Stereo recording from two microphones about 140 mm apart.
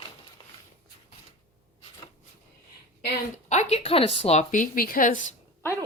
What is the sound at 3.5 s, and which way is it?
A woman's voice, 50° left (ahead or behind).